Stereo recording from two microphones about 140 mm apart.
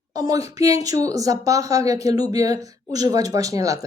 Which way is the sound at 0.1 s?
25° right (ahead or behind).